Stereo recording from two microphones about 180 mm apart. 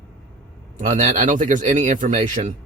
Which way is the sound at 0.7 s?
40° right (ahead or behind).